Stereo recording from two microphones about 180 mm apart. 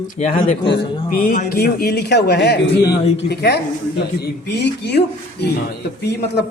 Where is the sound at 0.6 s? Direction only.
70° left (ahead or behind).